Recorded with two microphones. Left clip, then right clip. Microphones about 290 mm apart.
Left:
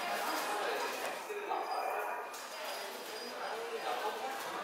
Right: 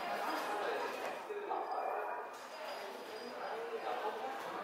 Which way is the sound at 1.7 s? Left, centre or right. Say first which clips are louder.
Left 2 dB; centre.